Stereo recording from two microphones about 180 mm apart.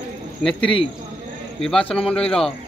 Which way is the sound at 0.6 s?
30° left (ahead or behind).